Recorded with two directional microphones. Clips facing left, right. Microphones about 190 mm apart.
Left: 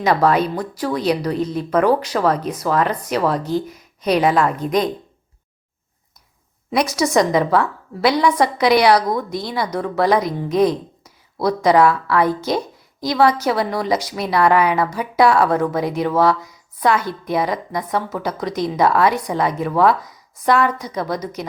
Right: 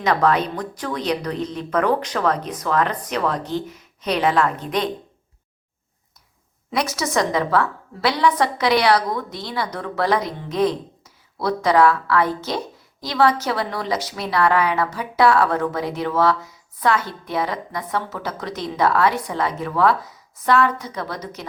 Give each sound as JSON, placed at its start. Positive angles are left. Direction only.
{"t": 0.0, "sound": "a woman's voice", "side_deg": 10}
{"t": 4.6, "sound": "a woman's voice", "side_deg": 40}
{"t": 6.7, "sound": "a woman's voice", "side_deg": 15}